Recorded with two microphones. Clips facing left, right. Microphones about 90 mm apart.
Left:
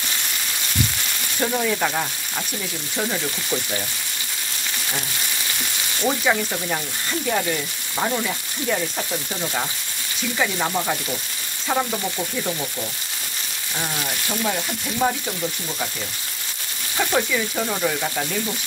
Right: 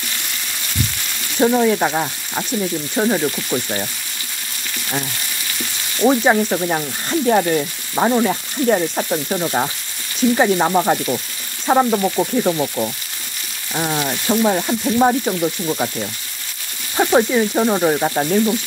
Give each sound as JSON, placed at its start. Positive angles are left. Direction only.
{"t": 1.4, "sound": "frying", "side_deg": -25}
{"t": 6.2, "sound": "frying", "side_deg": -30}
{"t": 7.9, "sound": "speech", "side_deg": -25}
{"t": 8.2, "sound": "frying", "side_deg": -40}
{"t": 16.9, "sound": "speech", "side_deg": -25}
{"t": 17.3, "sound": "frying", "side_deg": -35}